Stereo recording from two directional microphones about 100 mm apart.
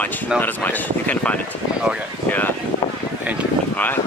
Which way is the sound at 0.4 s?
15° left (ahead or behind).